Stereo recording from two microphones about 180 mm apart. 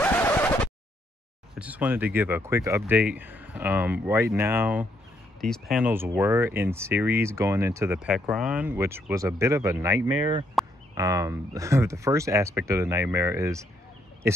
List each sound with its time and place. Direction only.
0.0 s a sound: 10° left (ahead or behind)
1.5 s speech: 10° right (ahead or behind)
5.4 s speech: centre (ahead or behind); by 14.4 s 15° right (ahead or behind)